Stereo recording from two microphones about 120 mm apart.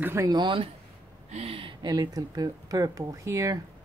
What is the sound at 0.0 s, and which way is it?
Speech, 20° right (ahead or behind).